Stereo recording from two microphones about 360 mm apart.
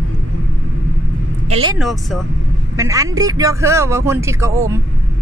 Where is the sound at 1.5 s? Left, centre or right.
Centre.